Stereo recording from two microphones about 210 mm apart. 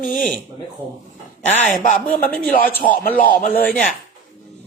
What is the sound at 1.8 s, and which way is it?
A man's voice, 40° left (ahead or behind).